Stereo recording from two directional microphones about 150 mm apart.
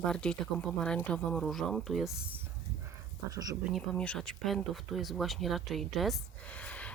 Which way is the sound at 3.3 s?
25° right (ahead or behind).